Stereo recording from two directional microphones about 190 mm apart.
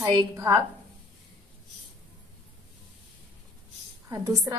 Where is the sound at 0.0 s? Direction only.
20° right (ahead or behind).